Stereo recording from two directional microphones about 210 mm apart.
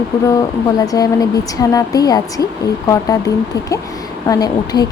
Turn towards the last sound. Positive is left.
turn(degrees=20)  # may be behind; listen again after turning